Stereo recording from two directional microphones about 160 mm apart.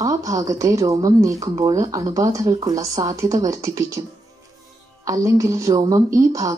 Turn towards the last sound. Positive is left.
turn(degrees=-20)  # may be behind; listen again after turning